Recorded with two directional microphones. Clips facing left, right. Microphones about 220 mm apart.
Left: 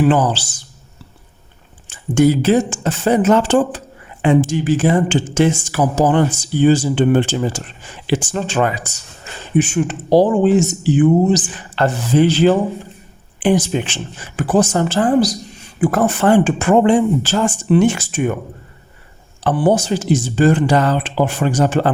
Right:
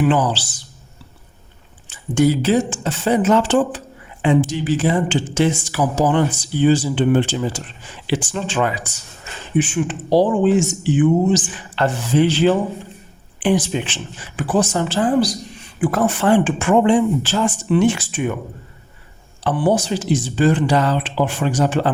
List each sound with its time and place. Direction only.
0.0 s speech: 45° left (ahead or behind)
1.9 s speech: 50° left (ahead or behind)
19.5 s speech: 45° left (ahead or behind)